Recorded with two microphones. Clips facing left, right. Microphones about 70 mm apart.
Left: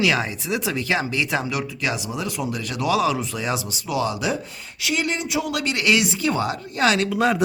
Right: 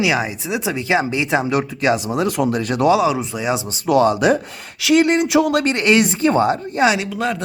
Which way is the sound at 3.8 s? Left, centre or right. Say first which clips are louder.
Right 10 dB; right.